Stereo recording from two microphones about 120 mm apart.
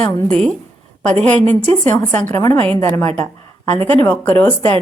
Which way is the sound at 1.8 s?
15° left (ahead or behind).